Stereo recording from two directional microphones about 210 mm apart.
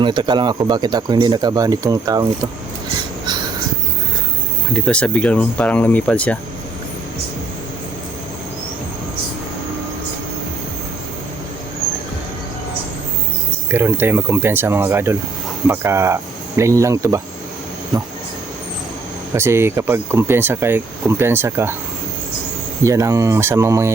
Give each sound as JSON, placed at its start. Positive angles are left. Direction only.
{"t": 0.0, "sound": "speech", "side_deg": -20}
{"t": 4.7, "sound": "speech", "side_deg": 5}
{"t": 13.7, "sound": "speech", "side_deg": -10}
{"t": 19.3, "sound": "speech", "side_deg": -10}
{"t": 22.8, "sound": "speech", "side_deg": -15}